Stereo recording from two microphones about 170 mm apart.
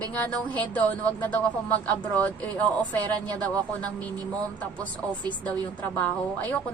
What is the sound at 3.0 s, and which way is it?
Speech, 25° right (ahead or behind).